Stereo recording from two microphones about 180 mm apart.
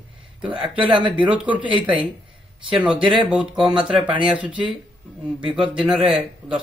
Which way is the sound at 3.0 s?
25° right (ahead or behind).